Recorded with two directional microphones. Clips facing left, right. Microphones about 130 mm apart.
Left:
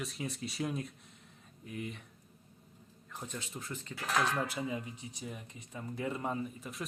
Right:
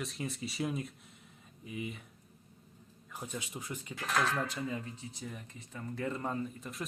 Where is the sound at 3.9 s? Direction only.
Centre (ahead or behind).